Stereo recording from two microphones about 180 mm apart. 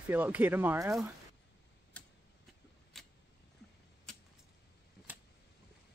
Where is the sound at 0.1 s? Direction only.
10° right (ahead or behind).